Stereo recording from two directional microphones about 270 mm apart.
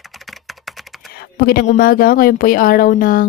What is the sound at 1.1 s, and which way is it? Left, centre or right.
A woman's voice, left.